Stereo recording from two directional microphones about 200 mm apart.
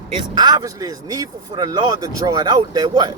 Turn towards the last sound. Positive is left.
turn(degrees=-20)  # may be behind; listen again after turning